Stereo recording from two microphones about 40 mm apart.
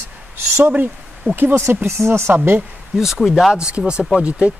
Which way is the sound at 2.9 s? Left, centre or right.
Centre.